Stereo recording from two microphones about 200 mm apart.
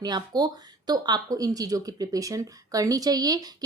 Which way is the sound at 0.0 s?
20° right (ahead or behind).